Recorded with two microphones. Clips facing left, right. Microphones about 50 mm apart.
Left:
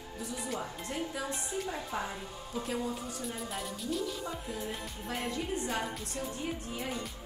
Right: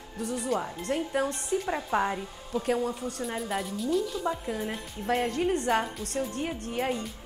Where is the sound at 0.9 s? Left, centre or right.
Right.